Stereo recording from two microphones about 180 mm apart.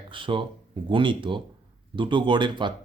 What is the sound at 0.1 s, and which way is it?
Speech, 30° right (ahead or behind).